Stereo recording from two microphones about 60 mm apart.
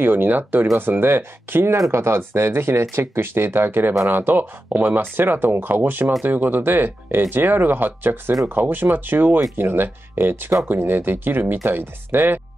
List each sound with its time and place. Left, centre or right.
0.0 s speech: right